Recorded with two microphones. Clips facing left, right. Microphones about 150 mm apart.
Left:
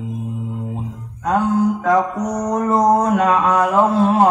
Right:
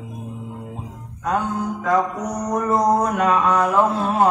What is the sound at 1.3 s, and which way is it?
Mantra, 35° left (ahead or behind).